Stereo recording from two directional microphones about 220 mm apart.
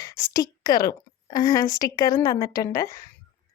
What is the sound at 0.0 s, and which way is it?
A woman's voice, 15° left (ahead or behind).